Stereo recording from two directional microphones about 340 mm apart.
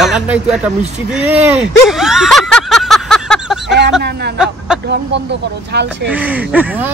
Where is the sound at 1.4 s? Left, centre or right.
Centre.